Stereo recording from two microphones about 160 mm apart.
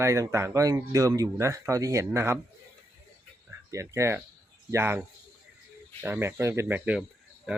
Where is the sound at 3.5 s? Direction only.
15° right (ahead or behind).